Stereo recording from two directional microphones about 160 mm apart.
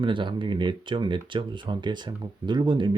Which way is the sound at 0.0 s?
30° right (ahead or behind).